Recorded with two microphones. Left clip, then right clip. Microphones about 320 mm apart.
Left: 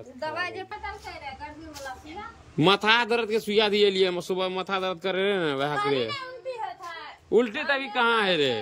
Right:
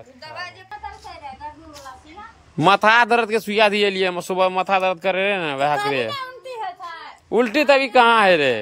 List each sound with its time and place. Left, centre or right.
0.2 s a woman's voice: left
2.5 s a man's voice: centre
7.2 s a man's voice: centre